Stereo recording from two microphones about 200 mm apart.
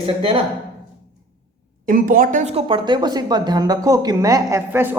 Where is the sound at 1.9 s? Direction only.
45° right (ahead or behind).